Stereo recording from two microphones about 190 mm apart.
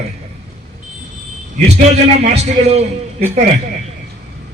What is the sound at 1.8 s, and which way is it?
A man's voice, 35° right (ahead or behind).